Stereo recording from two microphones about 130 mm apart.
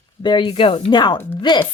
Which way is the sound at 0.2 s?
35° left (ahead or behind).